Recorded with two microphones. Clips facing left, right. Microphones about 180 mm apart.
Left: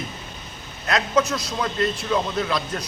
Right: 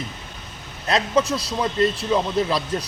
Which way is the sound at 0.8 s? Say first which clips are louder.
Right 1 dB; 30° right (ahead or behind).